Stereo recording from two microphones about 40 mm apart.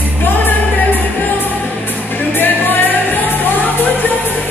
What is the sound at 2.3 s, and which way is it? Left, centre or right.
Music, left.